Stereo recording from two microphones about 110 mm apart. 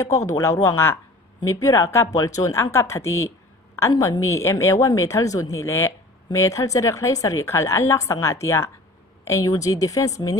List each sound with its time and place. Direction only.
0.3 s a woman's voice: 25° left (ahead or behind)